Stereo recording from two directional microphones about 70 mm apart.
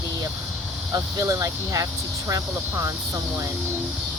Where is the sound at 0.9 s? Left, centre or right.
Right.